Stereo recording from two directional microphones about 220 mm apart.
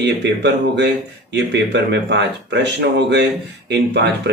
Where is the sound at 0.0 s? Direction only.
50° right (ahead or behind).